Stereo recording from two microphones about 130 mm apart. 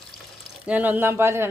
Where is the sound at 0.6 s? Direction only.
10° right (ahead or behind).